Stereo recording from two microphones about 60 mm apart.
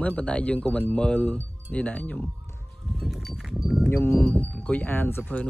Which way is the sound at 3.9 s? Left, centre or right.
Left.